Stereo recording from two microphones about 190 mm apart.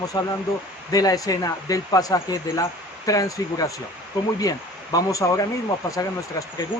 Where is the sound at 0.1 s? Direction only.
20° left (ahead or behind).